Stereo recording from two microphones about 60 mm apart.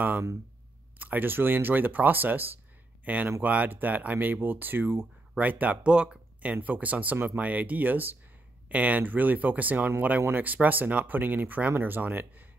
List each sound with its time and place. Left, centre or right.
0.9 s speech: right
5.4 s speech: right